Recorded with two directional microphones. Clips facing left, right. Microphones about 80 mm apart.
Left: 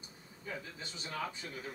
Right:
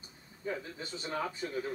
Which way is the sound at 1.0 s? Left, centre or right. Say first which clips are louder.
Right 4 dB; right.